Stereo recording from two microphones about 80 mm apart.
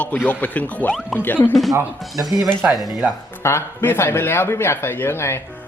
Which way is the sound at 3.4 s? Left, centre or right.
Left.